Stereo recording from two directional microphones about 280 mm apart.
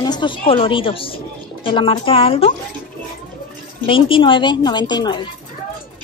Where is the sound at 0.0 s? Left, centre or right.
Centre.